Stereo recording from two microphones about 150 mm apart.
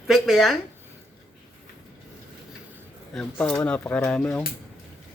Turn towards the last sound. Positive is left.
turn(degrees=5)  # may be behind; listen again after turning